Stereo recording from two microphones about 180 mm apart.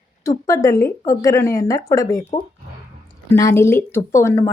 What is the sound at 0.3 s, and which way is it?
Speech, 15° left (ahead or behind).